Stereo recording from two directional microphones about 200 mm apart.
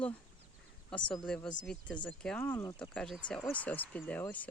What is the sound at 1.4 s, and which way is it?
Speech, 20° left (ahead or behind).